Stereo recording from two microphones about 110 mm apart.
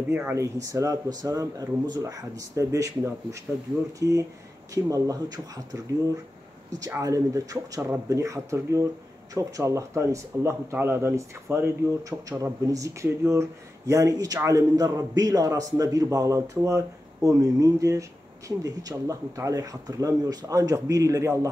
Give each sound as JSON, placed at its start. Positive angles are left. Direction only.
{"t": 0.1, "sound": "speech", "side_deg": -25}
{"t": 6.9, "sound": "speech", "side_deg": -30}